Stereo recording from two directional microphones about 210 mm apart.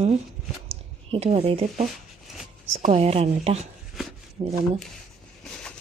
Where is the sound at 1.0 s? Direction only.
30° right (ahead or behind).